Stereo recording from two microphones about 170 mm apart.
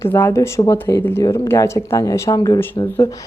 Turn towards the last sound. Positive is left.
turn(degrees=15)  # may be behind; listen again after turning